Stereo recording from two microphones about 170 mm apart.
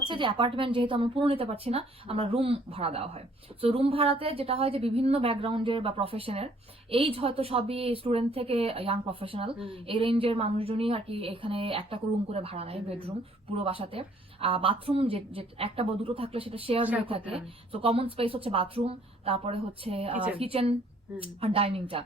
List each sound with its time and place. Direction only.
0.0 s a woman's voice: 30° right (ahead or behind)